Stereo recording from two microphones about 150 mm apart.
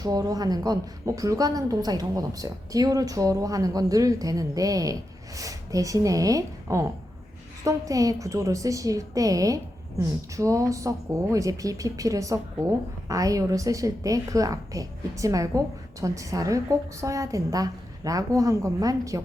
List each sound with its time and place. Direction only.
0.0 s a woman's voice: 25° right (ahead or behind)